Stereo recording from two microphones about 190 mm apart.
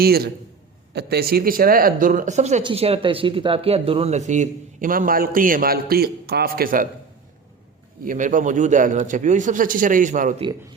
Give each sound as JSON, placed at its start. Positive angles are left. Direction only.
{"t": 0.9, "sound": "speech", "side_deg": -55}
{"t": 8.0, "sound": "speech", "side_deg": -45}